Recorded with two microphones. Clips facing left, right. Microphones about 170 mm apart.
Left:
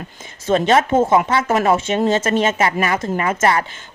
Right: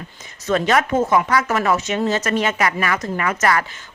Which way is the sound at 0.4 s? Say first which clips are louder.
Left 3 dB; 25° left (ahead or behind).